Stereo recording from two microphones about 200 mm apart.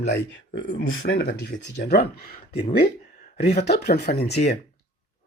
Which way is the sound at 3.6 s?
55° left (ahead or behind).